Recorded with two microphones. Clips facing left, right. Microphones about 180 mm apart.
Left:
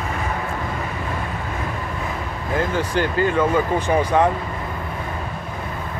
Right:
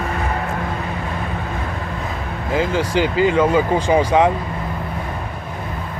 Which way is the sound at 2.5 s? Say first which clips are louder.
Right 3 dB; 90° right.